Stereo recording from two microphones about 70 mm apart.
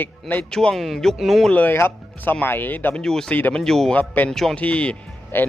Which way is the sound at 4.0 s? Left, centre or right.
Left.